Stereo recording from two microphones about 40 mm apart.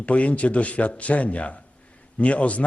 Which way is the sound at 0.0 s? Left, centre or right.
Left.